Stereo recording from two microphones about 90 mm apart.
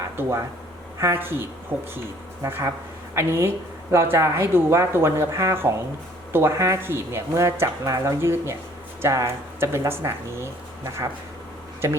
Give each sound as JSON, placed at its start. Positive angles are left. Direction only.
{"t": 0.2, "sound": "speech", "side_deg": -30}